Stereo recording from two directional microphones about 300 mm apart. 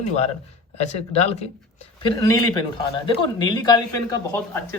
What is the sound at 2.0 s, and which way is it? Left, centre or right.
Speech, centre.